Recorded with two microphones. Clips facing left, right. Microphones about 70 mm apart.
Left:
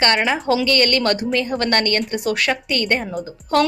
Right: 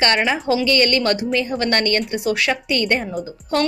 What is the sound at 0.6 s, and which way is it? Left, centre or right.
Speech, left.